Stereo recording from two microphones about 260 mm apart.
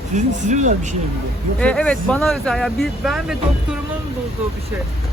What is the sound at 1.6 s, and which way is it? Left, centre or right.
Speech, centre.